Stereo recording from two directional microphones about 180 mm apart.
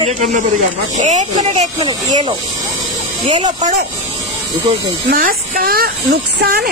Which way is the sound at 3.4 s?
40° right (ahead or behind).